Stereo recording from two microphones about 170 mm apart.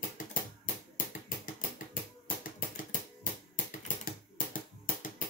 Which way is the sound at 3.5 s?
50° left (ahead or behind).